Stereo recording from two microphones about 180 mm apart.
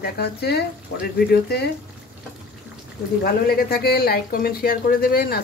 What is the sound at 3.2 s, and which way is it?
Speech, 55° left (ahead or behind).